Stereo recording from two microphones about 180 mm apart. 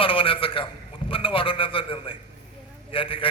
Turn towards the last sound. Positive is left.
turn(degrees=30)  # may be behind; listen again after turning